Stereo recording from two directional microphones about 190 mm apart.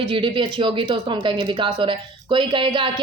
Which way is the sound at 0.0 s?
25° right (ahead or behind).